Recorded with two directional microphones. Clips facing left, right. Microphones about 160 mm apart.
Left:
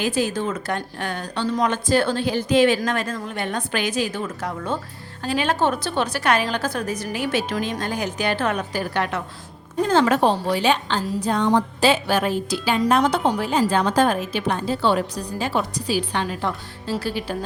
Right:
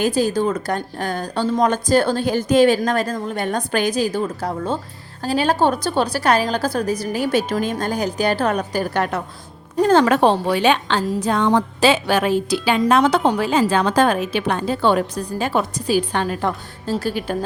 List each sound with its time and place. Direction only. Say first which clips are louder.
0.0 s a woman's voice: right 5 dB; 40° right (ahead or behind)
9.8 s a woman's voice: right 4 dB; 60° right (ahead or behind)